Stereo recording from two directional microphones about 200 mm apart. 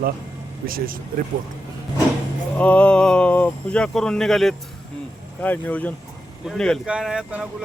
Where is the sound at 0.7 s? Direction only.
45° right (ahead or behind).